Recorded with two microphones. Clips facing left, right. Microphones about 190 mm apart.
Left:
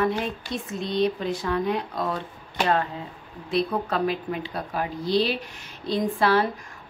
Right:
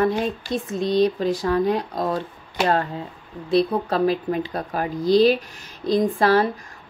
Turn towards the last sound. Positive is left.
turn(degrees=-40)  # may be behind; listen again after turning